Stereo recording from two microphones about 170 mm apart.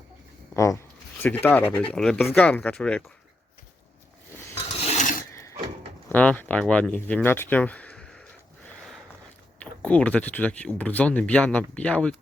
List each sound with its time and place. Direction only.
0.5 s speech: 15° left (ahead or behind)
4.9 s pulleys: 45° left (ahead or behind)
5.3 s a sound: 15° left (ahead or behind)
6.1 s speech: 10° left (ahead or behind)
9.6 s speech: 10° left (ahead or behind)